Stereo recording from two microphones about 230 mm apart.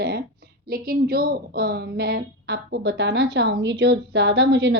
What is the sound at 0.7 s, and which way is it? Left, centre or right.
A woman's voice, right.